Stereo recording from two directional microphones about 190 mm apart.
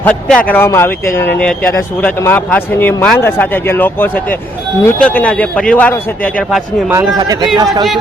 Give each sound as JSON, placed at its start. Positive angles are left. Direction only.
{"t": 0.0, "sound": "speech", "side_deg": 5}
{"t": 6.5, "sound": "a man's voice", "side_deg": -10}
{"t": 7.2, "sound": "a man's voice", "side_deg": -20}